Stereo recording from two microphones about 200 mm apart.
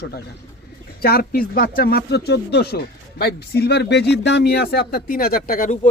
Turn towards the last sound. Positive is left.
turn(degrees=40)  # may be behind; listen again after turning